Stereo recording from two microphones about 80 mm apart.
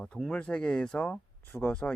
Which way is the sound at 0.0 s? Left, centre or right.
Centre.